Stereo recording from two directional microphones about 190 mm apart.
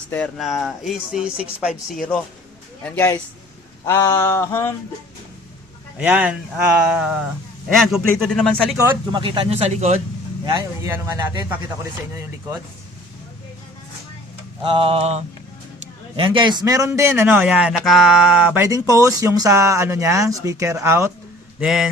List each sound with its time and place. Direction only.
0.3 s speech: centre (ahead or behind)
2.8 s a sound: 10° left (ahead or behind)
6.0 s a man's voice: 5° right (ahead or behind)
9.1 s speech: 25° right (ahead or behind)
10.4 s mantra: 20° right (ahead or behind)
10.9 s a man's voice: 15° right (ahead or behind)
14.6 s mantra: 25° right (ahead or behind)
15.8 s a man's voice: 25° right (ahead or behind)
21.6 s speech: centre (ahead or behind)